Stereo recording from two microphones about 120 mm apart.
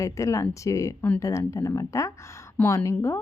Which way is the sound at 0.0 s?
25° left (ahead or behind).